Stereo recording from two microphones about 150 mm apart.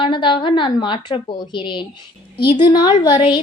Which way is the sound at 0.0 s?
30° left (ahead or behind).